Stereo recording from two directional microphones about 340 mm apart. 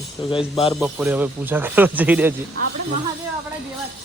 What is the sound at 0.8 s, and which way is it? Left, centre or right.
Speech, centre.